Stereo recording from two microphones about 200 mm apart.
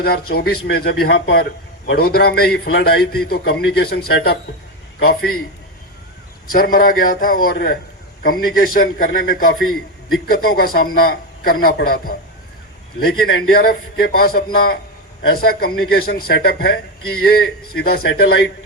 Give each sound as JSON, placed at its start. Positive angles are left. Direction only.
{"t": 0.0, "sound": "a man's voice", "side_deg": 50}
{"t": 6.5, "sound": "a man's voice", "side_deg": 45}
{"t": 9.6, "sound": "a man's voice", "side_deg": 90}
{"t": 10.3, "sound": "a man's voice", "side_deg": 45}